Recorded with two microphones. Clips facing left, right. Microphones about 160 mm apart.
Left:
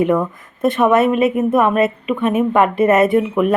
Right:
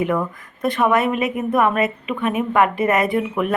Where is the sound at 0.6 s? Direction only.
25° left (ahead or behind).